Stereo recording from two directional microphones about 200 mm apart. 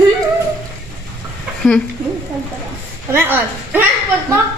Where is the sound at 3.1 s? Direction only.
10° right (ahead or behind).